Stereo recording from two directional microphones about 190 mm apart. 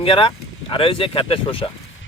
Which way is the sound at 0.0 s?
25° left (ahead or behind).